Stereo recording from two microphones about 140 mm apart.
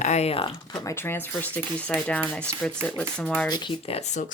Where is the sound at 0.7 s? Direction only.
25° left (ahead or behind); by 3.5 s 5° left (ahead or behind).